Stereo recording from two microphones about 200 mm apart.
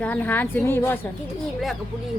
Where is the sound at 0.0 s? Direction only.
10° left (ahead or behind).